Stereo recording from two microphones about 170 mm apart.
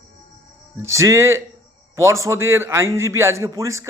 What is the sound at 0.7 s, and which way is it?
A man's voice, 15° right (ahead or behind).